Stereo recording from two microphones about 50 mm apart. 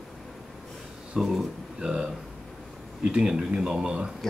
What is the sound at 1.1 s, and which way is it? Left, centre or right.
Speech, centre.